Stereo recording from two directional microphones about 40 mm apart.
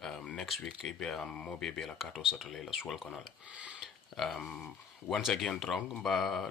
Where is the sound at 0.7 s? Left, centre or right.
Centre.